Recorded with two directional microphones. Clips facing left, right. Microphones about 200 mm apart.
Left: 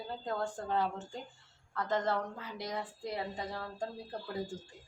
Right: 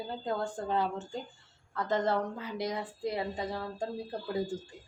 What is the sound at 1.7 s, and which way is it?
Speech, 20° right (ahead or behind).